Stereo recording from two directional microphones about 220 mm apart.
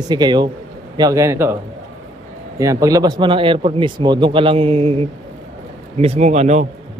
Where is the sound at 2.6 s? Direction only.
15° right (ahead or behind).